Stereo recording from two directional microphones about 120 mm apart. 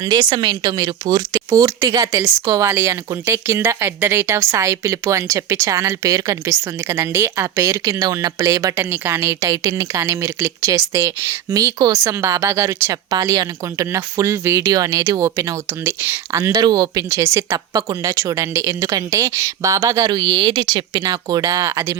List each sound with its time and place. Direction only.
0.0 s speech: 35° right (ahead or behind)